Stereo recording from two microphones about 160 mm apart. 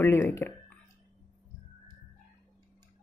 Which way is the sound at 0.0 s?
15° left (ahead or behind).